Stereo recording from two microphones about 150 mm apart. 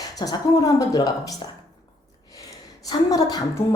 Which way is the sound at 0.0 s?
25° left (ahead or behind).